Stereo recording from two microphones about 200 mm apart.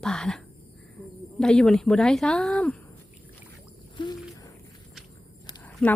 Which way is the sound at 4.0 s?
25° left (ahead or behind).